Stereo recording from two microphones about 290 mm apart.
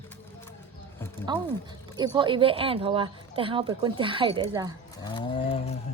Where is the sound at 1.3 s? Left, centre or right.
Centre.